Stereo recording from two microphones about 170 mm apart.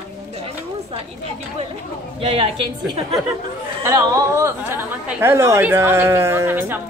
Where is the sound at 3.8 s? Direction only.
15° right (ahead or behind).